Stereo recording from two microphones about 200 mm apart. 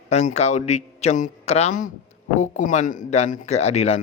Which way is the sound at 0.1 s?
35° left (ahead or behind).